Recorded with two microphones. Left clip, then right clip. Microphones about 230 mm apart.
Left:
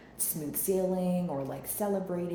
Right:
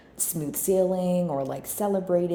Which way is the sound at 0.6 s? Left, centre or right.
Right.